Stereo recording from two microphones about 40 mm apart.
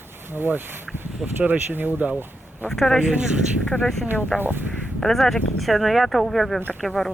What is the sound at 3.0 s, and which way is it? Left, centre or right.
Speech, right.